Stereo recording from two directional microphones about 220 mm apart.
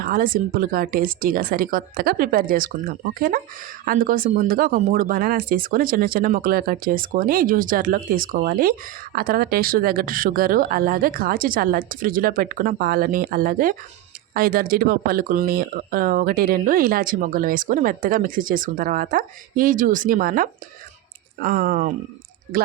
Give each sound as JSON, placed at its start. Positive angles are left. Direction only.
{"t": 0.0, "sound": "speech", "side_deg": -40}